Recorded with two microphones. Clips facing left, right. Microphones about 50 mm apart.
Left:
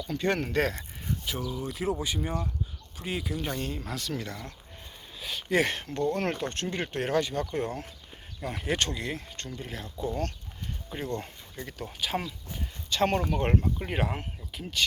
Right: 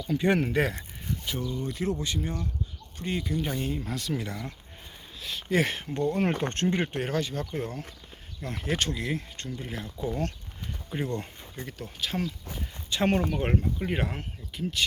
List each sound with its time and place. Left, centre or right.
0.0 s speech: centre
3.0 s speech: centre
5.2 s speech: centre
5.9 s speech: centre
6.3 s speech: right
6.8 s speech: centre
7.1 s speech: centre
12.9 s speech: centre